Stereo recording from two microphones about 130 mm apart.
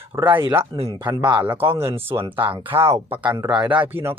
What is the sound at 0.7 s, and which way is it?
Speech, 45° right (ahead or behind).